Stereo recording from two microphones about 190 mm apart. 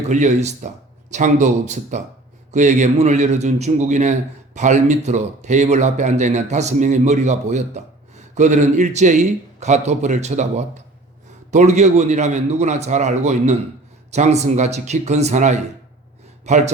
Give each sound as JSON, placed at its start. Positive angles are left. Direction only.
{"t": 0.0, "sound": "a man's voice", "side_deg": -35}